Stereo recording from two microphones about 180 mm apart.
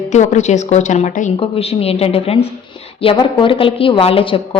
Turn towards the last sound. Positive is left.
turn(degrees=30)  # may be behind; listen again after turning